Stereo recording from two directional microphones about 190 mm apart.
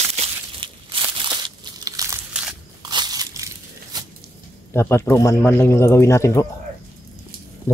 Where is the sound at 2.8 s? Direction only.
20° right (ahead or behind).